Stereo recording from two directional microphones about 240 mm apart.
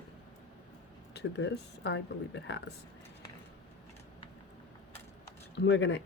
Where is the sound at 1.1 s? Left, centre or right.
Left.